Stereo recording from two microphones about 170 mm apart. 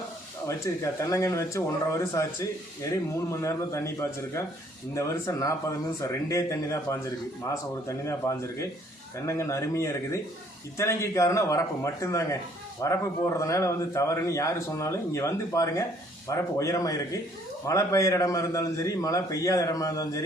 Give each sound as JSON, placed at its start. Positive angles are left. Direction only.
{"t": 0.4, "sound": "a man's voice", "side_deg": 15}
{"t": 4.9, "sound": "a man's voice", "side_deg": 20}